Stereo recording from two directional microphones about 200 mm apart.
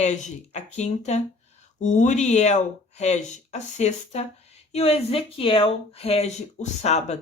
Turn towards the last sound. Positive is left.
turn(degrees=35)  # may be behind; listen again after turning